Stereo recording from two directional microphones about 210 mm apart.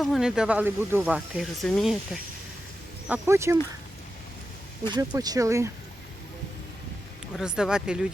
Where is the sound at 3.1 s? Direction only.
10° right (ahead or behind).